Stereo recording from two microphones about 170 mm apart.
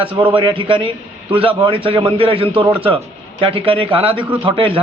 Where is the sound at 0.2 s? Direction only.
30° right (ahead or behind).